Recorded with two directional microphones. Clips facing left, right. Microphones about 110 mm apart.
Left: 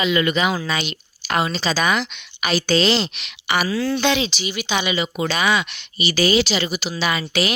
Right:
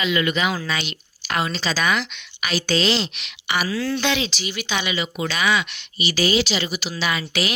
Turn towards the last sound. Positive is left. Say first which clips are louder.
# left 3 dB
turn(degrees=35)  # may be behind; listen again after turning